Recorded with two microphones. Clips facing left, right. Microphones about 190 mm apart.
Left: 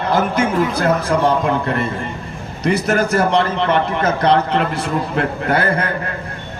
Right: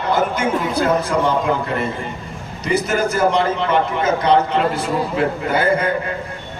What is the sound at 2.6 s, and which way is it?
A man's voice, 60° left (ahead or behind).